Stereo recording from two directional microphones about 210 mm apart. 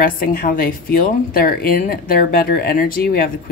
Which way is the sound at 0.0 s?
45° left (ahead or behind).